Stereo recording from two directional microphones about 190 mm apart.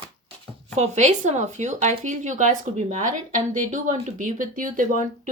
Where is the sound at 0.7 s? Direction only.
35° right (ahead or behind).